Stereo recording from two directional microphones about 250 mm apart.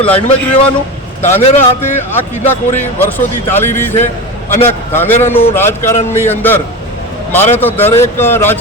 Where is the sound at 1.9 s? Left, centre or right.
Centre.